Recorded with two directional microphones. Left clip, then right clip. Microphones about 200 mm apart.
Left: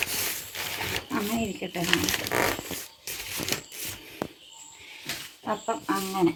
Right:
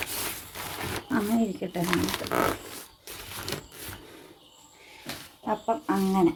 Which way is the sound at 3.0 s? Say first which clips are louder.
Left 4 dB; 55° right (ahead or behind).